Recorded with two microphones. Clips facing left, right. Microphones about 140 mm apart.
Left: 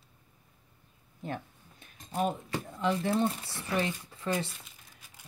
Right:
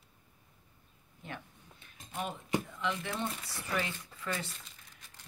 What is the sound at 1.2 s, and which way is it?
Cutlery, 40° left (ahead or behind).